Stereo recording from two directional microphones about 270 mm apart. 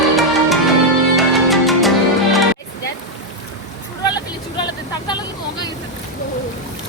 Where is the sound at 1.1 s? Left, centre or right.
Centre.